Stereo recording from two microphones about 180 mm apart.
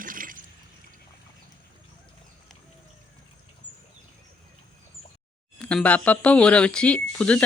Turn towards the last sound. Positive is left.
turn(degrees=5)  # may be behind; listen again after turning